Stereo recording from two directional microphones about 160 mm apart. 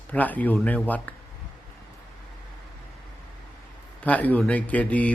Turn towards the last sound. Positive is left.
turn(degrees=10)  # may be behind; listen again after turning